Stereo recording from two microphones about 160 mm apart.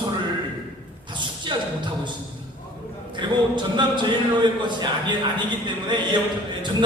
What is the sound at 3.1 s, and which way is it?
A man's voice, 30° right (ahead or behind).